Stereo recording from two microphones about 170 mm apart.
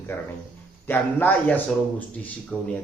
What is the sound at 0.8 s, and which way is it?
Speech, 10° left (ahead or behind).